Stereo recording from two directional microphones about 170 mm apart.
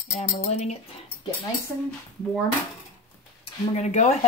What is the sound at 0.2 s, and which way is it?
Speech, 45° left (ahead or behind).